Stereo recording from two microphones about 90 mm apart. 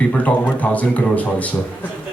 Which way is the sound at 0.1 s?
15° left (ahead or behind).